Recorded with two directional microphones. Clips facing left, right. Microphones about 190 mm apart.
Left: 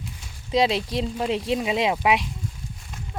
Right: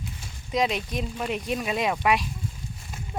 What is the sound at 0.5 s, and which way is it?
Speech, 30° left (ahead or behind).